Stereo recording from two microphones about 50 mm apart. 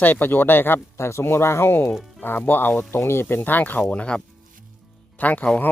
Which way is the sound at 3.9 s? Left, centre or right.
Left.